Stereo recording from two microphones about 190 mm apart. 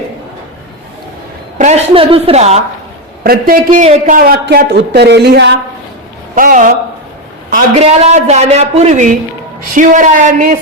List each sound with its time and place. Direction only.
1.5 s speech: 35° right (ahead or behind)
3.2 s a man's voice: 50° right (ahead or behind)
6.3 s a man's voice: 45° right (ahead or behind)